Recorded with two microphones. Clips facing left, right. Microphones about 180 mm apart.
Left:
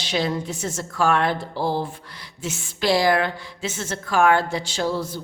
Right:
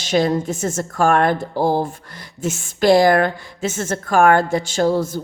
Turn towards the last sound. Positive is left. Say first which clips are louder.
# right 7 dB
turn(degrees=-45)  # may be behind; listen again after turning